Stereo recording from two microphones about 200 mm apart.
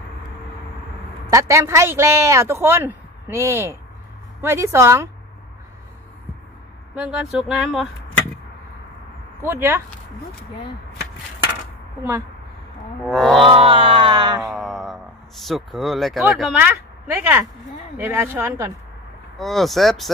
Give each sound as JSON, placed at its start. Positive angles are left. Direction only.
{"t": 1.3, "sound": "a man's voice", "side_deg": -15}
{"t": 7.0, "sound": "speech", "side_deg": -5}
{"t": 9.4, "sound": "a man's voice", "side_deg": -10}
{"t": 13.0, "sound": "speech", "side_deg": 0}
{"t": 13.5, "sound": "a sound", "side_deg": -25}
{"t": 14.5, "sound": "a man's voice", "side_deg": 0}
{"t": 19.3, "sound": "speech", "side_deg": 0}